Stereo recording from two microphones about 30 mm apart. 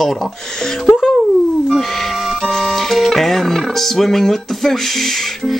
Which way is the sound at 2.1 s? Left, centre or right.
Centre.